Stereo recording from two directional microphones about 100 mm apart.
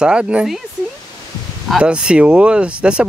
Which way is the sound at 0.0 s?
10° right (ahead or behind).